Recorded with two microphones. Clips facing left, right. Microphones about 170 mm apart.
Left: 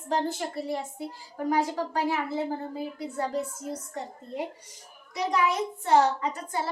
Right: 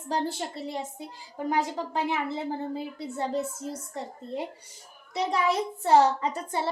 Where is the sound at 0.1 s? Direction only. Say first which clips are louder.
Left 1 dB; 30° right (ahead or behind).